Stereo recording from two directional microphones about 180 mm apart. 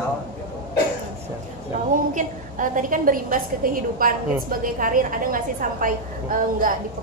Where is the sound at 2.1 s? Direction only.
45° right (ahead or behind).